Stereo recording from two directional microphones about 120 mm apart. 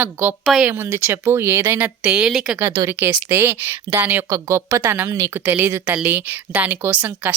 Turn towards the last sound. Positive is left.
turn(degrees=-15)  # may be behind; listen again after turning